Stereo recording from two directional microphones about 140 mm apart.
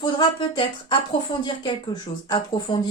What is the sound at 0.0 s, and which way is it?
Speech, 30° left (ahead or behind).